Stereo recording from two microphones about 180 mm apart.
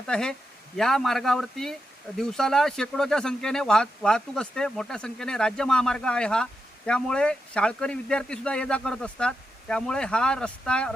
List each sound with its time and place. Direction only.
0.1 s speech: 5° left (ahead or behind)